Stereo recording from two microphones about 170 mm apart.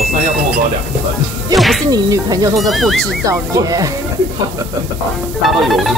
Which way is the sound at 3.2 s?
20° right (ahead or behind).